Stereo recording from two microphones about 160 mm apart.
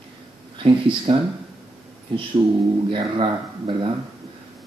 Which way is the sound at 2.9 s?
30° right (ahead or behind).